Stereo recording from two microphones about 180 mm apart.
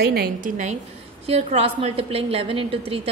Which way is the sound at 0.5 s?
40° right (ahead or behind).